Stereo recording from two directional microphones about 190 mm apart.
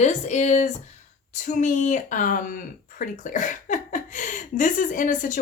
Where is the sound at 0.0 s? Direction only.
35° left (ahead or behind).